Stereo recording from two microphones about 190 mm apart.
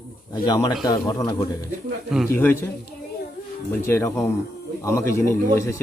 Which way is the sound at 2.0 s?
Centre (ahead or behind).